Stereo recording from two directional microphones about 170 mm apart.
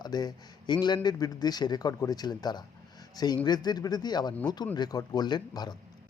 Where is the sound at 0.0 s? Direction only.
25° left (ahead or behind).